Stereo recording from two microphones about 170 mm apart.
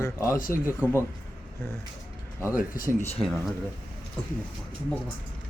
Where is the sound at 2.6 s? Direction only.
55° left (ahead or behind).